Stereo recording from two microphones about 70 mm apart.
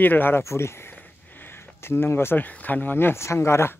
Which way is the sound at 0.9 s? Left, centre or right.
Left.